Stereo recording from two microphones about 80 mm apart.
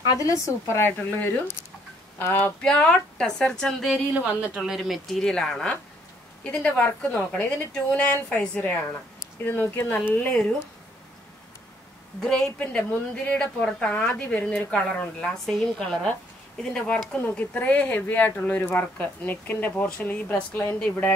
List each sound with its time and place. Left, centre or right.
0.1 s a woman's voice: left
2.6 s a woman's voice: centre
12.2 s speech: centre
12.5 s a woman's voice: centre
15.4 s a woman's voice: centre